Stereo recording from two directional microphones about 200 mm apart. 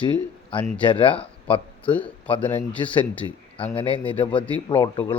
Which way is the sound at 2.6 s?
25° left (ahead or behind).